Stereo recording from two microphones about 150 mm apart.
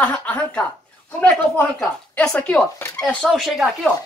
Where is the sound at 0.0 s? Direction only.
10° left (ahead or behind).